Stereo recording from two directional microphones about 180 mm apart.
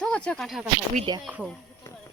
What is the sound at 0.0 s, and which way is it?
A man's voice, 5° left (ahead or behind).